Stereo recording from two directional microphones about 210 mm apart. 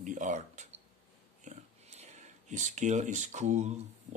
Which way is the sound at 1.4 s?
30° right (ahead or behind).